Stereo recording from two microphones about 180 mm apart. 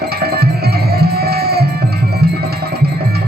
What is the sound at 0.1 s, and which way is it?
Music, 60° right (ahead or behind).